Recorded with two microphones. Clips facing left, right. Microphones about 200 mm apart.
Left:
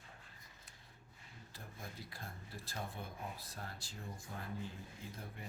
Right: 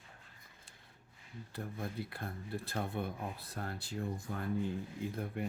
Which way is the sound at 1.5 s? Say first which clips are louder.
Right 11 dB; 60° right (ahead or behind).